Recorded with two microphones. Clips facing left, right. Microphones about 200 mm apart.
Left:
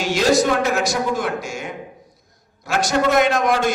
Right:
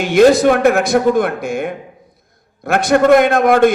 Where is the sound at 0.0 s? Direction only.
55° right (ahead or behind).